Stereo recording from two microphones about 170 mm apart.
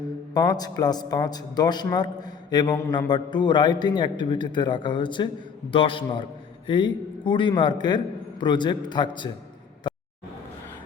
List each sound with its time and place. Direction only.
0.3 s a man's voice: 25° left (ahead or behind)